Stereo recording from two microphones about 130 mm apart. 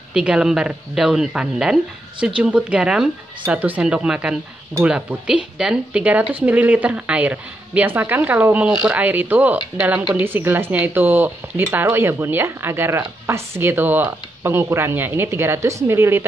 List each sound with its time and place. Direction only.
0.1 s speech: 5° right (ahead or behind)